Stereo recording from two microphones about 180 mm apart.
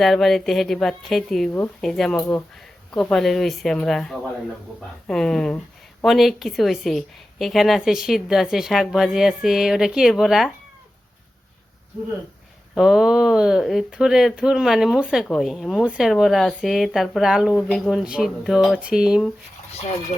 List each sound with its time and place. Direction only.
0.0 s speech: centre (ahead or behind)
12.7 s speech: 5° right (ahead or behind)